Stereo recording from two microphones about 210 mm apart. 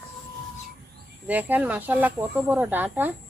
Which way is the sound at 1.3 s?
10° right (ahead or behind).